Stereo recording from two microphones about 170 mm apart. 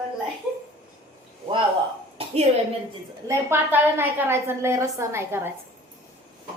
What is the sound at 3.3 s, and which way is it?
A woman's voice, 15° right (ahead or behind).